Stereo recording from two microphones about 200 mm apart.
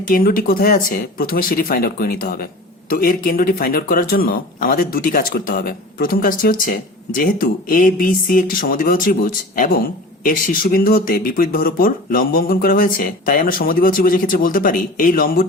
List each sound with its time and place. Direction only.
0.0 s speech: 45° left (ahead or behind)